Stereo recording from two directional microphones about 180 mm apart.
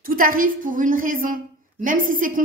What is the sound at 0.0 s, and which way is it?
A woman's voice, 50° right (ahead or behind).